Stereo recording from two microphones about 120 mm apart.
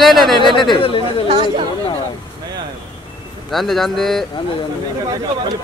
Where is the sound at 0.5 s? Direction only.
40° left (ahead or behind).